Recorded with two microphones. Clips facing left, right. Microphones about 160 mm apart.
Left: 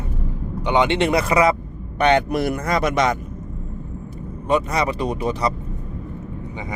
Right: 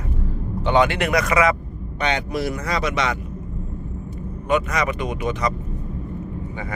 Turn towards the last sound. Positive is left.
turn(degrees=35)  # may be behind; listen again after turning